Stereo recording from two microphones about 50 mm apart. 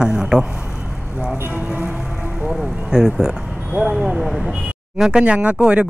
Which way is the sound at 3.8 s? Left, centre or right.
Right.